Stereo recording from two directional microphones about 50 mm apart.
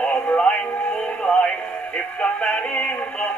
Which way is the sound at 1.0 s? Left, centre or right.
Left.